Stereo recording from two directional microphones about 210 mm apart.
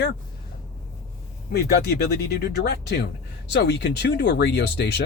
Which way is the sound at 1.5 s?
50° left (ahead or behind).